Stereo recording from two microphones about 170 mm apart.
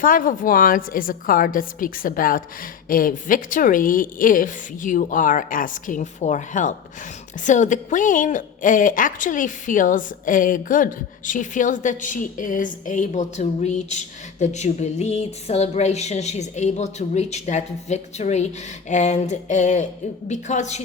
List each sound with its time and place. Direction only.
0.0 s a woman's voice: 55° left (ahead or behind)